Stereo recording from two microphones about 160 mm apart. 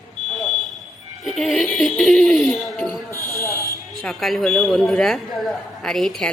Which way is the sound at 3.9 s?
Centre (ahead or behind).